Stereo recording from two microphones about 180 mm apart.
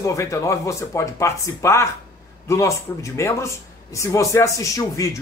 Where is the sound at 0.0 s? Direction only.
15° left (ahead or behind).